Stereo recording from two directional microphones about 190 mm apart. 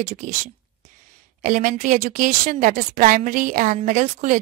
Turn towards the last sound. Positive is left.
turn(degrees=-40)  # may be behind; listen again after turning